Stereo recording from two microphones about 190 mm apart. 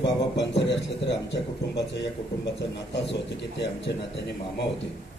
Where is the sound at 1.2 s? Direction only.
65° left (ahead or behind).